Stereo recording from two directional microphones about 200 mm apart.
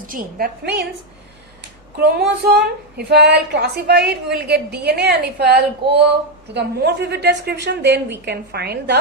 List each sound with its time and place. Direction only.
0.1 s a woman's voice: 45° right (ahead or behind)
2.0 s a woman's voice: 50° right (ahead or behind)